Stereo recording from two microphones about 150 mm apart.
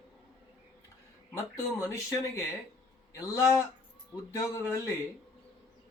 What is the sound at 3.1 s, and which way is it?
Speech, 20° left (ahead or behind).